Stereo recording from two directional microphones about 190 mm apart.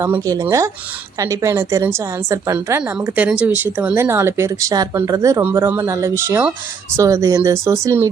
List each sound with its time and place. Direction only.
0.0 s a woman's voice: 15° right (ahead or behind)